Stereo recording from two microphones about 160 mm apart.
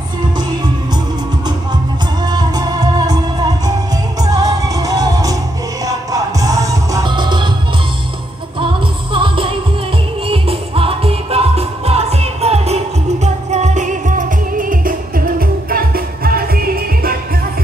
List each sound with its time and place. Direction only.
2.2 s music: 25° right (ahead or behind)
9.1 s music: 35° right (ahead or behind); by 17.2 s 70° right (ahead or behind)